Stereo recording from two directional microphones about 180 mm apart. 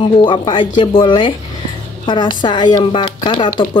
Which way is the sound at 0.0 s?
25° left (ahead or behind).